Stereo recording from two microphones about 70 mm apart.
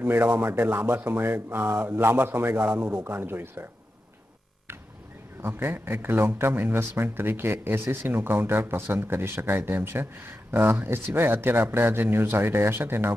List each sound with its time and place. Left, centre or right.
0.0 s speech: right
5.4 s speech: right